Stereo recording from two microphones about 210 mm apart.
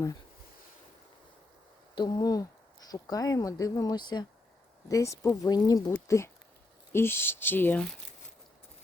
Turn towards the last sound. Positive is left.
turn(degrees=5)  # may be behind; listen again after turning